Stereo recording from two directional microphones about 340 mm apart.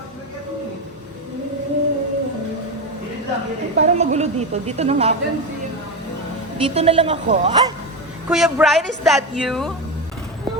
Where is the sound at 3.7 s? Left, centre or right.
Centre.